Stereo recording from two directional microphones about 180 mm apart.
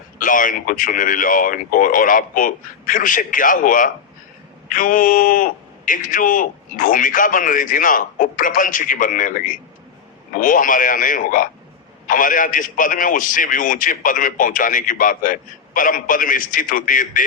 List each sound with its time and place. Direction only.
0.2 s a man's voice: 50° left (ahead or behind)